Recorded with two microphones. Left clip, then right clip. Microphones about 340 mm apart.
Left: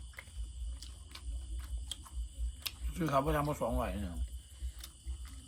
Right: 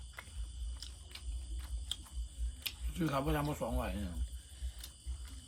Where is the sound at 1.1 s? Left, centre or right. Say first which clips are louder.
Even; centre.